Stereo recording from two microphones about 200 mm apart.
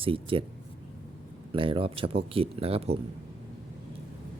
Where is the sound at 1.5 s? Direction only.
25° right (ahead or behind).